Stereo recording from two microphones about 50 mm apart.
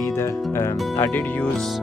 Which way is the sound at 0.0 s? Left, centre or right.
Left.